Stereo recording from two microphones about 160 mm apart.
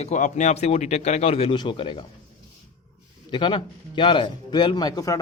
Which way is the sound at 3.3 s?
30° left (ahead or behind).